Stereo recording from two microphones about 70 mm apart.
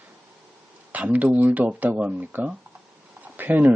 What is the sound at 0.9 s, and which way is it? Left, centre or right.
Speech, right.